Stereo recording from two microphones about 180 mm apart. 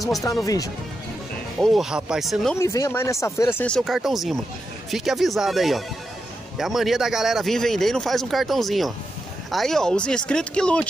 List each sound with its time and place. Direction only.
0.2 s speech: 20° left (ahead or behind)
1.6 s speech: centre (ahead or behind)
2.5 s speech: 15° left (ahead or behind)